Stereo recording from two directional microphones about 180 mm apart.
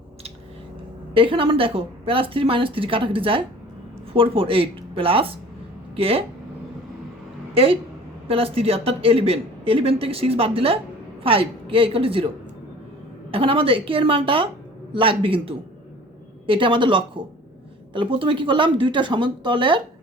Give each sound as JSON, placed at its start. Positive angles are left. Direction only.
{"t": 1.1, "sound": "a woman's voice", "side_deg": -30}
{"t": 7.5, "sound": "a woman's voice", "side_deg": -30}
{"t": 13.3, "sound": "a woman's voice", "side_deg": -30}